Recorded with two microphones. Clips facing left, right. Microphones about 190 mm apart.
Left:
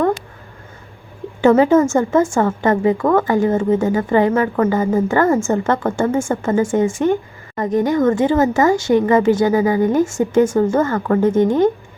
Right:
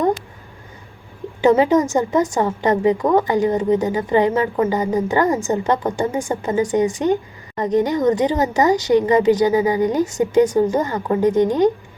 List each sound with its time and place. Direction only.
1.4 s a woman's voice: 15° right (ahead or behind)